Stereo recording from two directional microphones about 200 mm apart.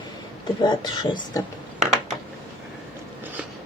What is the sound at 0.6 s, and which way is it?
Speech, 20° left (ahead or behind).